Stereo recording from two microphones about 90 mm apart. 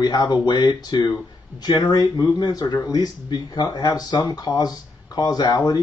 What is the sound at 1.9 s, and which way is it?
Speech, 40° left (ahead or behind).